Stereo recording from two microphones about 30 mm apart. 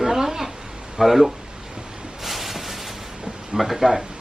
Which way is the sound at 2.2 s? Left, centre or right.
Centre.